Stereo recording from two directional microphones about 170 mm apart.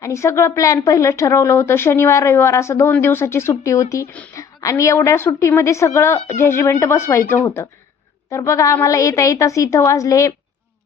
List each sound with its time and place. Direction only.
0.0 s a woman's voice: 15° left (ahead or behind)